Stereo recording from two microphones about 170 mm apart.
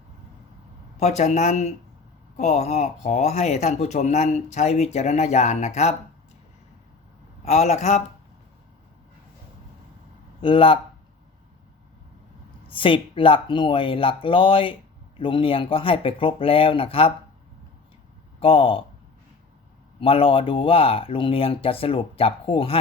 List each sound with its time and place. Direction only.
0.9 s speech: 40° left (ahead or behind)
7.4 s speech: 40° left (ahead or behind)
10.4 s speech: 30° left (ahead or behind)
12.6 s speech: 30° left (ahead or behind)
18.3 s speech: 30° left (ahead or behind)
20.0 s speech: 30° left (ahead or behind)